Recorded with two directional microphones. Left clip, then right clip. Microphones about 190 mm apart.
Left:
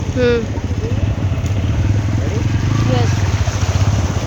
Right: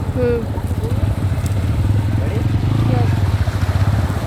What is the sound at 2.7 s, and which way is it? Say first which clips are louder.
Vehicle: left 3 dB; 35° left (ahead or behind).